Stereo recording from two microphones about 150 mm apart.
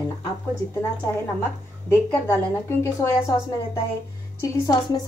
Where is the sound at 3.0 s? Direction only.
20° left (ahead or behind).